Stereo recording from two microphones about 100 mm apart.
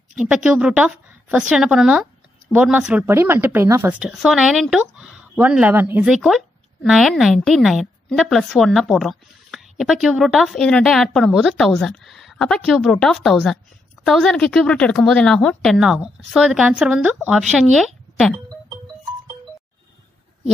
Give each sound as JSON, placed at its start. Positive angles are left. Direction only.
{"t": 0.1, "sound": "a woman's voice", "side_deg": -10}
{"t": 3.2, "sound": "a woman's voice", "side_deg": -25}
{"t": 4.0, "sound": "a woman's voice", "side_deg": -5}
{"t": 6.0, "sound": "a woman's voice", "side_deg": -5}